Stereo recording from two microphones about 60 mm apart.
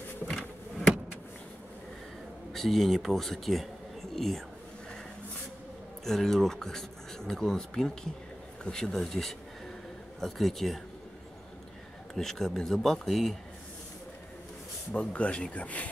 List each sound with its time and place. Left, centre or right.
0.3 s insect: centre
2.5 s a man's voice: centre
4.1 s a sound: centre
6.0 s a man's voice: centre
12.1 s a man's voice: centre
15.0 s speech: centre